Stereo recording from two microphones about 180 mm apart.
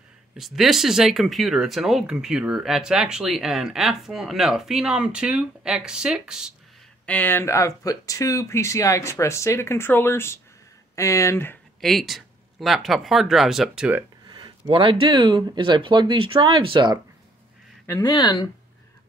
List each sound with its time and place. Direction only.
0.4 s speech: centre (ahead or behind)
7.1 s speech: 10° left (ahead or behind)
11.8 s speech: centre (ahead or behind)
14.2 s speech: 25° right (ahead or behind)
17.8 s speech: 20° left (ahead or behind)